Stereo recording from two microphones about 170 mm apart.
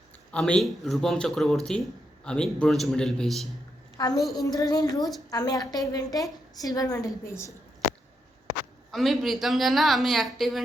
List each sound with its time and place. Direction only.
0.3 s a woman's voice: 5° left (ahead or behind)
3.9 s a woman's voice: 20° left (ahead or behind)
8.9 s a woman's voice: centre (ahead or behind)